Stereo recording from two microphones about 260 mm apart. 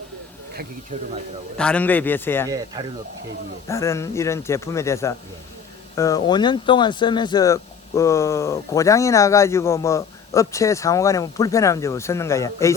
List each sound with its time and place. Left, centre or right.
0.9 s speech: right
1.5 s speech: centre
2.8 s speech: centre
3.7 s speech: centre